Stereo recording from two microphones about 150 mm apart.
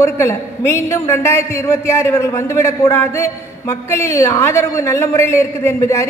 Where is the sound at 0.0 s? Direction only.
20° left (ahead or behind).